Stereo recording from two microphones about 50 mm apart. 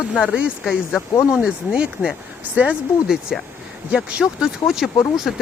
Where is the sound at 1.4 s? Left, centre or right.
Centre.